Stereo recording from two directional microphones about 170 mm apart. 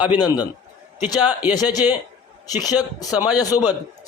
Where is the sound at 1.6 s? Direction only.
25° left (ahead or behind).